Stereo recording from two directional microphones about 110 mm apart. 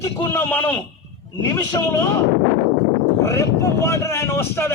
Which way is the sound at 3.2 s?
25° left (ahead or behind).